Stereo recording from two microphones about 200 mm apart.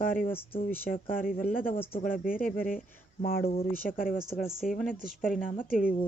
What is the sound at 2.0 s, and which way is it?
Speech, 45° left (ahead or behind).